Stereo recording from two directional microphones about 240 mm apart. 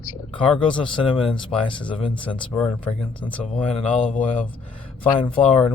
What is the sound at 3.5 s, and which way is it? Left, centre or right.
Speech, left.